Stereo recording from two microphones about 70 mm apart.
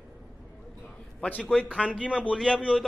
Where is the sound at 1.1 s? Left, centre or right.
Centre.